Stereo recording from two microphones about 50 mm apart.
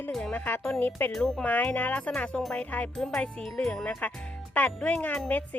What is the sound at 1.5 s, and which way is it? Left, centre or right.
Music, left.